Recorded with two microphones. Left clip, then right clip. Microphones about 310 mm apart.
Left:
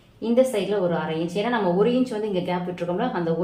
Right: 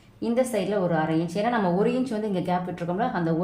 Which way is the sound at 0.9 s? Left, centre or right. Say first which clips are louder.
Even; right.